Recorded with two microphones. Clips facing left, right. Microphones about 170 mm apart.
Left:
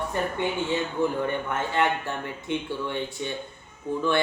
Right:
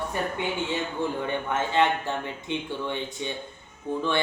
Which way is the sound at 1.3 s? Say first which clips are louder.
Right 1 dB; 20° right (ahead or behind).